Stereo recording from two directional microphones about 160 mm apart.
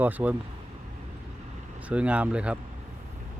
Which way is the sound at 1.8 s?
5° right (ahead or behind).